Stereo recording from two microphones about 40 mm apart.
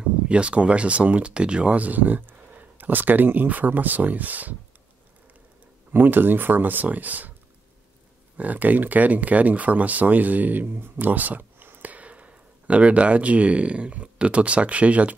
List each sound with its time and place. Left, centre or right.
0.3 s speech: right
1.3 s speech: right
1.8 s speech: right
5.9 s speech: right
8.4 s speech: right